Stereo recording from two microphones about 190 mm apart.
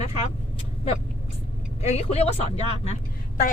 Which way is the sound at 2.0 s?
30° left (ahead or behind).